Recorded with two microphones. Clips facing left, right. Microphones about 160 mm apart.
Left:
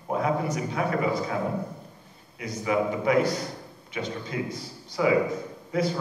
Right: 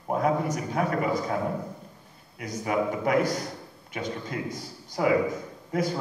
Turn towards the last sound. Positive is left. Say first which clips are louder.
# left 1 dB
turn(degrees=-45)  # may be behind; listen again after turning